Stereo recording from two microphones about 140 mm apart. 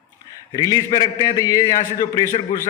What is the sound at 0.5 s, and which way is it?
A man's voice, 25° left (ahead or behind).